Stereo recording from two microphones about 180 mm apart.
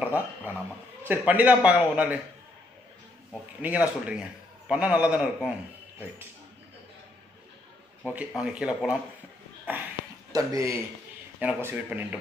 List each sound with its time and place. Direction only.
0.0 s a man's voice: 10° right (ahead or behind)
3.6 s a man's voice: 5° right (ahead or behind)
8.0 s a man's voice: 10° right (ahead or behind)
10.3 s a man's voice: 20° right (ahead or behind)